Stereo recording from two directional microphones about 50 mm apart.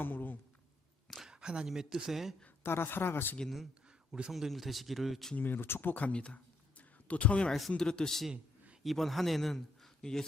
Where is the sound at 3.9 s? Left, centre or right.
Centre.